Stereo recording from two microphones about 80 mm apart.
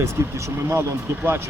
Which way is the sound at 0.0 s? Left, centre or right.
Right.